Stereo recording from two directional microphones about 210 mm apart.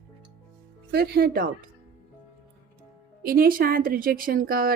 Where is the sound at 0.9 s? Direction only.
45° right (ahead or behind).